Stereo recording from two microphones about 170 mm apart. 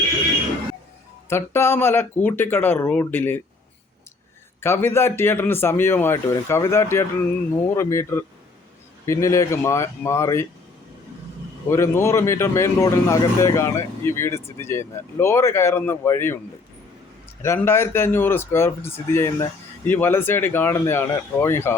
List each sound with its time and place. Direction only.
1.3 s speech: 15° left (ahead or behind)
4.6 s speech: 15° left (ahead or behind)
11.7 s speech: 15° left (ahead or behind)
17.4 s speech: 15° left (ahead or behind)